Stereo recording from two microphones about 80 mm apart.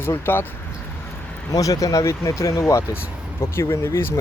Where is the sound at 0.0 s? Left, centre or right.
Left.